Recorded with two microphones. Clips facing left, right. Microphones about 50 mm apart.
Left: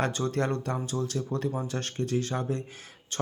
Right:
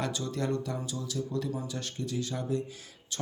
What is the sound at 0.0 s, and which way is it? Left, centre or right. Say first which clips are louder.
Speech: left 5 dB; left.